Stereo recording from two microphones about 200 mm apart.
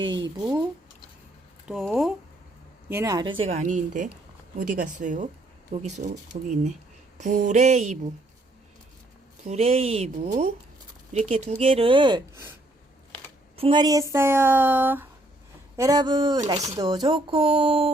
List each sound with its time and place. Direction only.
1.6 s speech: centre (ahead or behind)
2.9 s a woman's voice: 15° right (ahead or behind); by 7.9 s 35° right (ahead or behind)
9.5 s a woman's voice: 30° right (ahead or behind)
13.6 s a woman's voice: 25° right (ahead or behind)